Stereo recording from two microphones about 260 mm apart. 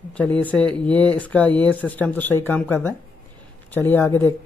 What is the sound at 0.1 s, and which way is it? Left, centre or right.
Speech, centre.